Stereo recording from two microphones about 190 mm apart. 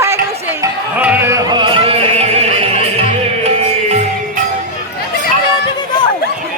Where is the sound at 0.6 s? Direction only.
10° right (ahead or behind); by 2.6 s 35° right (ahead or behind).